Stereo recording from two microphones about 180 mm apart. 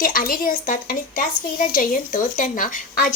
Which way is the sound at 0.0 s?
50° left (ahead or behind).